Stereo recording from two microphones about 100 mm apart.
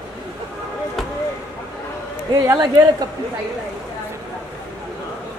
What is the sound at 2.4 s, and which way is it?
Speech, 35° right (ahead or behind).